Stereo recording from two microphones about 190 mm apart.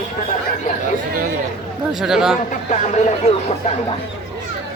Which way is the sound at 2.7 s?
35° left (ahead or behind).